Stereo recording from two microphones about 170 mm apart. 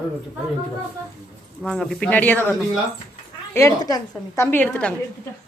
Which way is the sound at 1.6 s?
5° left (ahead or behind).